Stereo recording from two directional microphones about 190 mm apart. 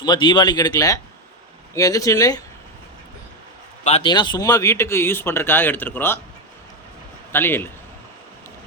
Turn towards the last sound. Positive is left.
turn(degrees=10)  # may be behind; listen again after turning